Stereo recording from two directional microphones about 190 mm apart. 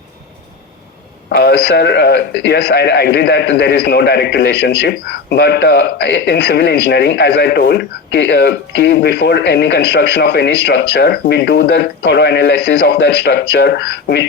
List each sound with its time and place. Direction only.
1.3 s a man's voice: 55° left (ahead or behind)